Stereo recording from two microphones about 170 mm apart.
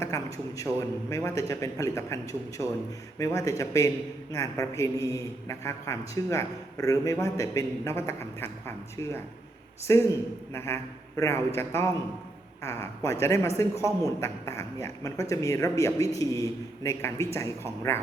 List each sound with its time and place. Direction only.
0.0 s a man's voice: 20° left (ahead or behind)